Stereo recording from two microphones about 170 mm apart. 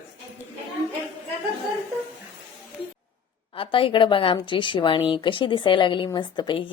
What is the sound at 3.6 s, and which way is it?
Speech, 30° left (ahead or behind).